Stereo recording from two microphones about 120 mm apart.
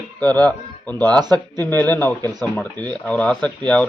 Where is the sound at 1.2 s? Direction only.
35° right (ahead or behind).